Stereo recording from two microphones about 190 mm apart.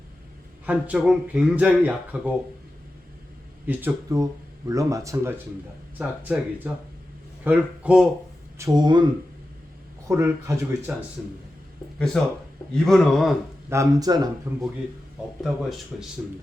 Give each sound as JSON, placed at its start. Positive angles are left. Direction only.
{"t": 0.6, "sound": "speech", "side_deg": -5}
{"t": 3.7, "sound": "a man's voice", "side_deg": -10}
{"t": 8.5, "sound": "speech", "side_deg": -20}
{"t": 10.1, "sound": "speech", "side_deg": -15}
{"t": 11.2, "sound": "speech", "side_deg": 0}
{"t": 13.7, "sound": "speech", "side_deg": -15}
{"t": 15.9, "sound": "speech", "side_deg": 0}